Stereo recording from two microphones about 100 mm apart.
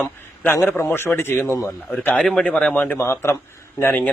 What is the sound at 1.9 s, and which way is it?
A man's voice, 10° left (ahead or behind).